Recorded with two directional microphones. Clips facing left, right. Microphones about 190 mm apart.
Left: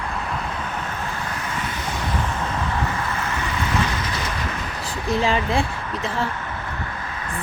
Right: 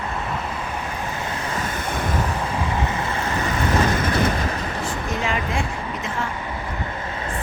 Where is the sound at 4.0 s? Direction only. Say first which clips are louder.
Right 7 dB; 55° right (ahead or behind).